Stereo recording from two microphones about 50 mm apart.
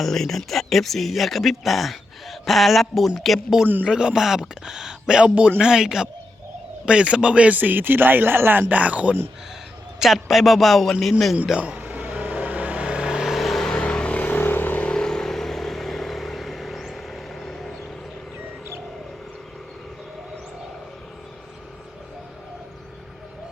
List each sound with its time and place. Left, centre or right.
0.0 s speech: centre
3.8 s a man's voice: centre
7.5 s speech: right
8.7 s a man's voice: right
10.0 s speech: centre
11.6 s vehicle: right
13.2 s vehicle: centre
13.7 s vehicle: centre
14.2 s vehicle: left
14.8 s vehicle: centre